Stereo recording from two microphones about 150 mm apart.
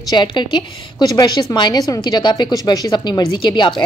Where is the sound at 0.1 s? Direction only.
30° left (ahead or behind).